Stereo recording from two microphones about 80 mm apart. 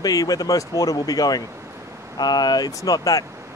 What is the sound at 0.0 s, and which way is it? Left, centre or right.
Speech, left.